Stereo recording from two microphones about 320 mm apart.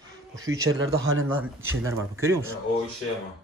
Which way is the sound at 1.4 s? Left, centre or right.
Centre.